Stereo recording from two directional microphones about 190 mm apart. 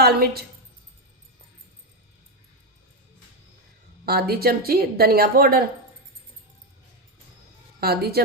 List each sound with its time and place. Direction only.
0.0 s a woman's voice: 55° right (ahead or behind)
4.0 s a woman's voice: 55° right (ahead or behind)
7.8 s a woman's voice: 55° right (ahead or behind)